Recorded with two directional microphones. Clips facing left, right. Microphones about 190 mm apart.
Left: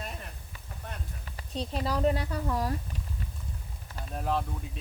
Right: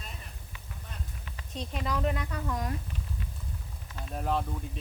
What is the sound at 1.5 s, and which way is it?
A woman's voice, 35° left (ahead or behind).